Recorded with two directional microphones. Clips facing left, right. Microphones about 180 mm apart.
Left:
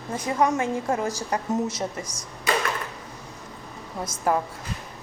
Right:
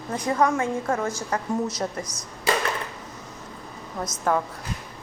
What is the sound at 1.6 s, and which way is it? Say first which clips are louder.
Speech: right 1 dB; 30° left (ahead or behind).